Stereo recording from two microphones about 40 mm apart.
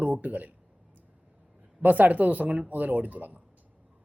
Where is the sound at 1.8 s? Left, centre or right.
Right.